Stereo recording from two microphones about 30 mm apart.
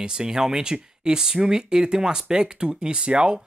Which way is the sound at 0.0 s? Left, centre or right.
Right.